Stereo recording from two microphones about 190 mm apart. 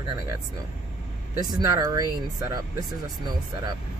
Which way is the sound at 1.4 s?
20° right (ahead or behind).